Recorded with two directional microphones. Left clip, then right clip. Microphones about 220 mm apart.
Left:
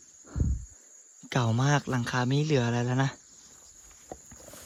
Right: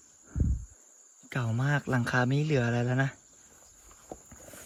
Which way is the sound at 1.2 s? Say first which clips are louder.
Left 5 dB; 10° left (ahead or behind).